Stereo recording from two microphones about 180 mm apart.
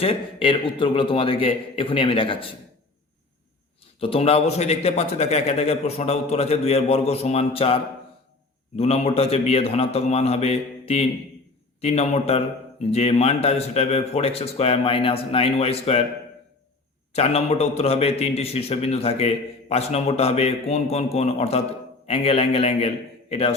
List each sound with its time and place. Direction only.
0.0 s a man's voice: 30° left (ahead or behind)
4.0 s a man's voice: 35° left (ahead or behind)
17.1 s a man's voice: 35° left (ahead or behind)